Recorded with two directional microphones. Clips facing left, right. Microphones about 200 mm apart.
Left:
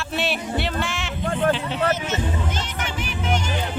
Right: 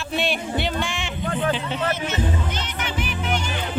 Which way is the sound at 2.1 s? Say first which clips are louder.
Even; 45° left (ahead or behind).